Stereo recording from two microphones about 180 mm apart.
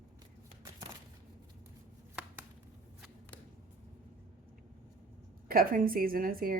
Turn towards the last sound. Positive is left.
turn(degrees=-55)  # may be behind; listen again after turning